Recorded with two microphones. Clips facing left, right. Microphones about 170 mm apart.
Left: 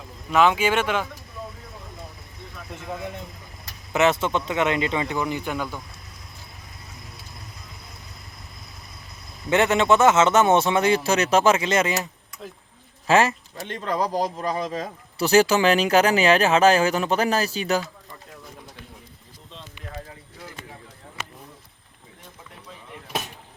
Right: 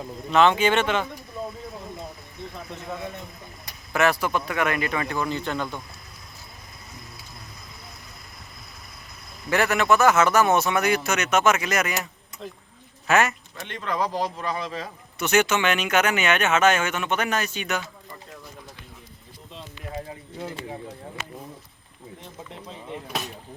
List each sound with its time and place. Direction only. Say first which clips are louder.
0.3 s speech: even; 5° left (ahead or behind)
1.4 s a sound: right 4 dB; 30° right (ahead or behind)
3.9 s speech: left 2 dB; 20° left (ahead or behind)
9.5 s speech: left 2 dB; 25° left (ahead or behind)
12.4 s speech: right 1 dB; 5° left (ahead or behind)
13.1 s a man's voice: left 2 dB; 30° left (ahead or behind)